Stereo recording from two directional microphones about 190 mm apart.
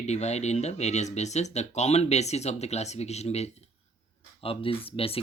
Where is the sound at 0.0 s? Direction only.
35° left (ahead or behind).